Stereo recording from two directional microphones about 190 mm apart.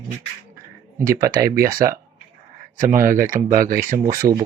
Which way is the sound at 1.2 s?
15° right (ahead or behind).